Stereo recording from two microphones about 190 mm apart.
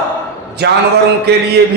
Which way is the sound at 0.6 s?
60° right (ahead or behind).